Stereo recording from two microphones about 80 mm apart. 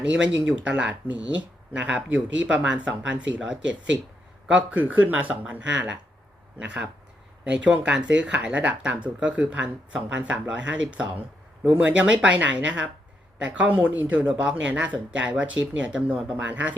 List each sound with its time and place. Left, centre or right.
0.0 s speech: centre
7.4 s speech: centre